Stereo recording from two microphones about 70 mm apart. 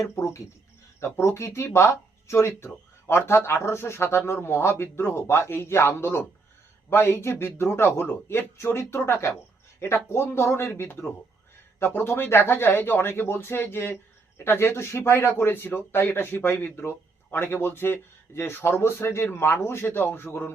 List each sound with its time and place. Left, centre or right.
0.9 s speech: left